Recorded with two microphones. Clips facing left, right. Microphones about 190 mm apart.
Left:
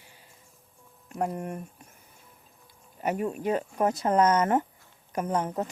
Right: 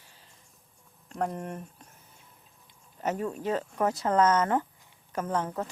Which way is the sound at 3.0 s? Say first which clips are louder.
Left 2 dB; 10° left (ahead or behind).